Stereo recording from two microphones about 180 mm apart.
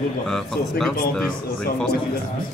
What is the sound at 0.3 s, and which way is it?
A man's voice, centre (ahead or behind).